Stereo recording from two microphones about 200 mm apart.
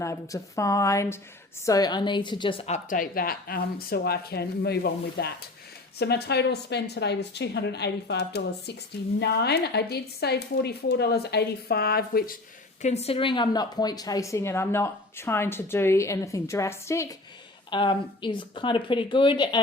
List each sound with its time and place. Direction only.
0.0 s a woman's voice: 15° left (ahead or behind); by 12.4 s 45° left (ahead or behind)
12.8 s a woman's voice: 30° left (ahead or behind)